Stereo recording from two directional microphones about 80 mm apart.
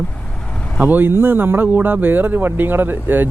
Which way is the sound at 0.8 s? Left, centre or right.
Right.